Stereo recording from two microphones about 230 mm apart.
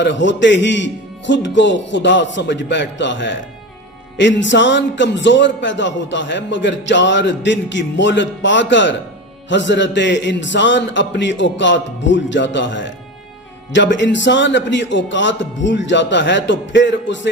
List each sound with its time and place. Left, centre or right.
0.0 s a man's voice: left